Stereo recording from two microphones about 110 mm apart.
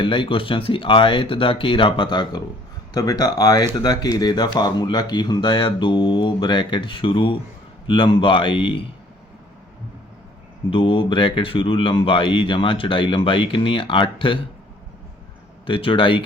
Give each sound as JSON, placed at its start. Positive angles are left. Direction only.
{"t": 0.0, "sound": "speech", "side_deg": 50}
{"t": 10.7, "sound": "speech", "side_deg": 50}
{"t": 15.6, "sound": "speech", "side_deg": 50}